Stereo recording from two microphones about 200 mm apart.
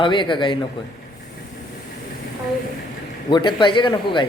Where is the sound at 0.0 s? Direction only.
25° left (ahead or behind).